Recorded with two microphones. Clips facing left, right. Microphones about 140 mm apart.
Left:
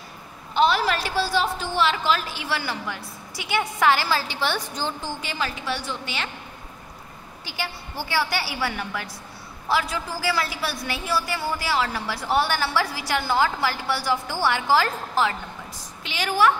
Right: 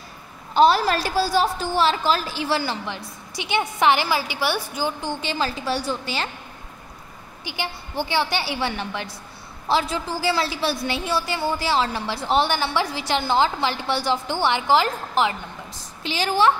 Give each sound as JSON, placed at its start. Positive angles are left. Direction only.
{"t": 0.6, "sound": "a woman's voice", "side_deg": -40}
{"t": 5.2, "sound": "a woman's voice", "side_deg": -30}
{"t": 7.4, "sound": "a woman's voice", "side_deg": -20}
{"t": 16.0, "sound": "a woman's voice", "side_deg": -30}